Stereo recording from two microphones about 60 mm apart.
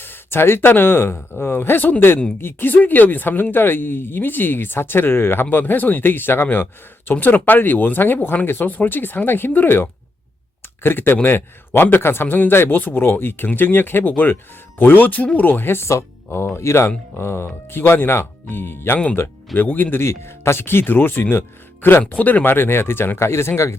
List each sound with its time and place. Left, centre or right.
0.0 s speech: left
20.1 s speech: left
22.1 s speech: left